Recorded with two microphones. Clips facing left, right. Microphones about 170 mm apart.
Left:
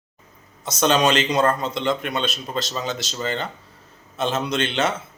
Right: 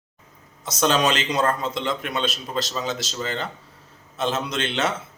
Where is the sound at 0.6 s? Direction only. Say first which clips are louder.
Left 2 dB; centre (ahead or behind).